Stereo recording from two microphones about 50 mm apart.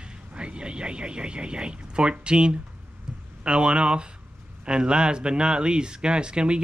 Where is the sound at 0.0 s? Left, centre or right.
Right.